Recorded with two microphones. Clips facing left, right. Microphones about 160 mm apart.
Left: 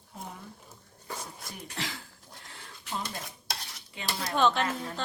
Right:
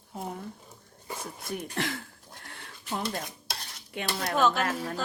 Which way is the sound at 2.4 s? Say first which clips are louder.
Right 4 dB; 55° right (ahead or behind).